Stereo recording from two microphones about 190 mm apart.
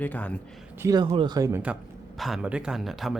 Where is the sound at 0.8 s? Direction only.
20° right (ahead or behind).